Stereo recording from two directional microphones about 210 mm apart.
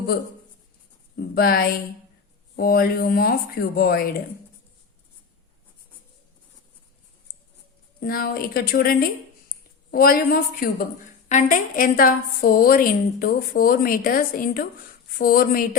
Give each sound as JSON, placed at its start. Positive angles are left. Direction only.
{"t": 1.1, "sound": "a woman's voice", "side_deg": 45}
{"t": 8.0, "sound": "a woman's voice", "side_deg": 45}